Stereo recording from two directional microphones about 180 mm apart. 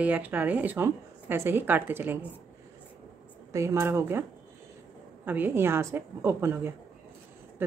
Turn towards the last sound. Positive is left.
turn(degrees=-10)  # may be behind; listen again after turning